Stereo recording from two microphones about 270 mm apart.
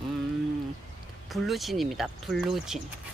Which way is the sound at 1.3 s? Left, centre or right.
Centre.